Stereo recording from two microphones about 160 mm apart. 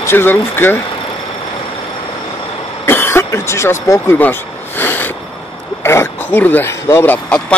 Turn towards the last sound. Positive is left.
turn(degrees=10)  # may be behind; listen again after turning